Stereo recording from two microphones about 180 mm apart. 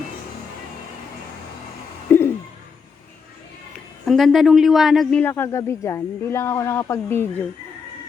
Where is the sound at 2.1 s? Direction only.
10° left (ahead or behind).